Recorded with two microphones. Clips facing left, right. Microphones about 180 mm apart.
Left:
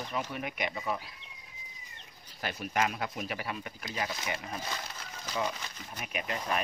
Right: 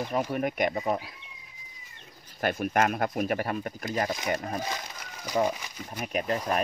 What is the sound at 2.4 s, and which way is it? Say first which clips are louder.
Speech: right 6 dB; 50° right (ahead or behind).